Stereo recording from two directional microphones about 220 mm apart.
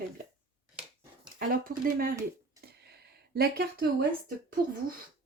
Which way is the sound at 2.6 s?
45° right (ahead or behind).